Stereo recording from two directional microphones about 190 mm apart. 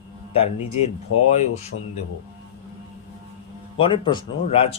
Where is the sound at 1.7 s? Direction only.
90° left.